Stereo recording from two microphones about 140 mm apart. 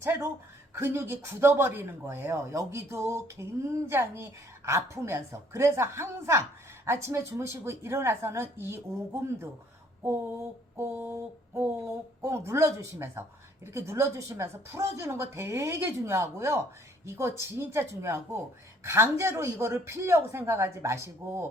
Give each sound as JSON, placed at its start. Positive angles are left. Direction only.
{"t": 0.0, "sound": "speech", "side_deg": -15}
{"t": 10.8, "sound": "a sound", "side_deg": -15}
{"t": 12.2, "sound": "speech", "side_deg": -20}